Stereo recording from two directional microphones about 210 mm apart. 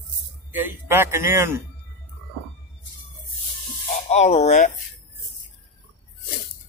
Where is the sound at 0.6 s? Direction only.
10° right (ahead or behind).